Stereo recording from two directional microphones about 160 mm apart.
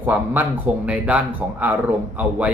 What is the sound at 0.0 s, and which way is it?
Speech, 10° right (ahead or behind).